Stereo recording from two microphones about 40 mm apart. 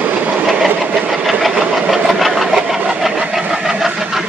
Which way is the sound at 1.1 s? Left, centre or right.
Centre.